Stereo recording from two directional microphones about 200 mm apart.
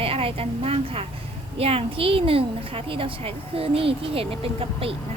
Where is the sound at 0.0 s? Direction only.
30° right (ahead or behind).